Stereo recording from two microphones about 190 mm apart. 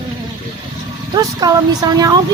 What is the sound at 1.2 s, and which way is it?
Speech, 20° right (ahead or behind).